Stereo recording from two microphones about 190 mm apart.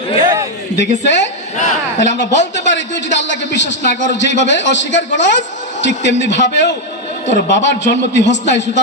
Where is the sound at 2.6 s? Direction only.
70° left (ahead or behind).